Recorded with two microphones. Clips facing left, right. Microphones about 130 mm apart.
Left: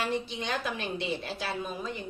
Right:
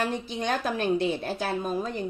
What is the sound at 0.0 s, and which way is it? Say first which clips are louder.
A woman's voice: right 3 dB; 45° right (ahead or behind).